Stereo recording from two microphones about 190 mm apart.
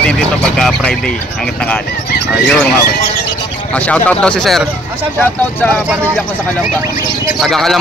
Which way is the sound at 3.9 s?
5° left (ahead or behind).